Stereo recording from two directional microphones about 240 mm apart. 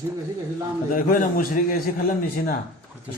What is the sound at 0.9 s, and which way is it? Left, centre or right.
Speech, left.